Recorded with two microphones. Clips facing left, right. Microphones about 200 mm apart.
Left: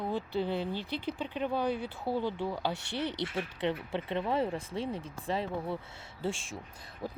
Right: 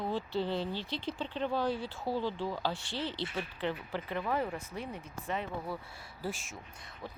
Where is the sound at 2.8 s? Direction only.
65° left (ahead or behind).